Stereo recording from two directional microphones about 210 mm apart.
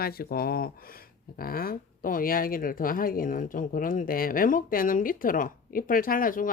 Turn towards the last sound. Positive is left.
turn(degrees=40)  # may be behind; listen again after turning